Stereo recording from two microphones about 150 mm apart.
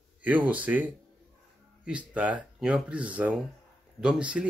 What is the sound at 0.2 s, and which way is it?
Speech, 10° right (ahead or behind).